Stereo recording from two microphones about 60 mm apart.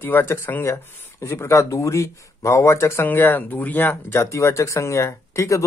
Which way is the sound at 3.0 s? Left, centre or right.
Left.